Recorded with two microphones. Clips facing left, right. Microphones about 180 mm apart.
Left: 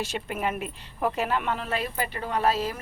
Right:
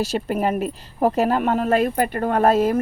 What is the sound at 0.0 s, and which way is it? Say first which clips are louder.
A woman's voice: right 8 dB; 40° right (ahead or behind).